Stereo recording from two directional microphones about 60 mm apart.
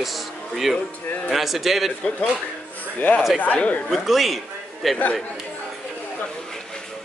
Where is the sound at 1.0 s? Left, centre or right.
Left.